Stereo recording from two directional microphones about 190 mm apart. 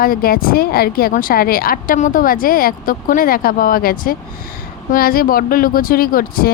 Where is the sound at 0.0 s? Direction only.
50° left (ahead or behind).